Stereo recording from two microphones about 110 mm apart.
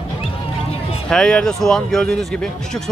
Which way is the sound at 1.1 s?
5° left (ahead or behind).